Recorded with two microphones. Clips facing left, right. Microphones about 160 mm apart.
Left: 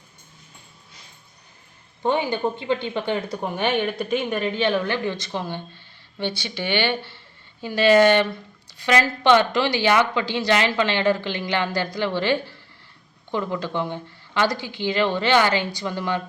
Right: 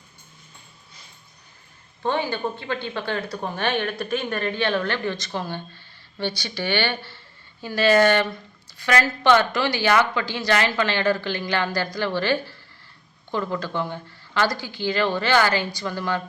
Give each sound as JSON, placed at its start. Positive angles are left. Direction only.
{"t": 2.0, "sound": "a woman's voice", "side_deg": 15}